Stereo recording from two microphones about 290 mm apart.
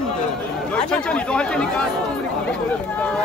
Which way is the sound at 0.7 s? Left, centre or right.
Centre.